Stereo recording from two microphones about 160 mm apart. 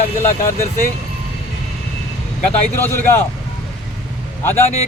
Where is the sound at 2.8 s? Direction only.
15° left (ahead or behind).